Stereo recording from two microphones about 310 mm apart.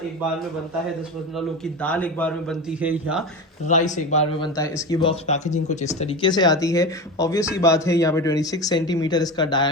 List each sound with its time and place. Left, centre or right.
1.4 s a man's voice: centre
3.7 s speech: left